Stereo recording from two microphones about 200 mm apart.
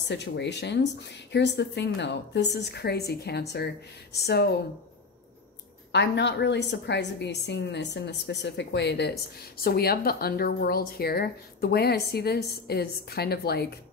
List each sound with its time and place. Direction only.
0.1 s a woman's voice: 60° left (ahead or behind)
5.9 s a woman's voice: 60° left (ahead or behind)